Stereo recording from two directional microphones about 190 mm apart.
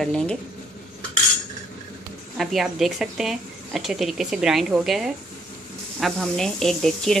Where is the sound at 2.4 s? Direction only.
Centre (ahead or behind).